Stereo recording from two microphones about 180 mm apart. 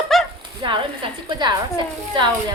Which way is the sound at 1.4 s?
25° right (ahead or behind).